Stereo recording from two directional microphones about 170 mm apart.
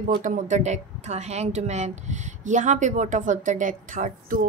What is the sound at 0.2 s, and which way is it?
Speech, 45° right (ahead or behind).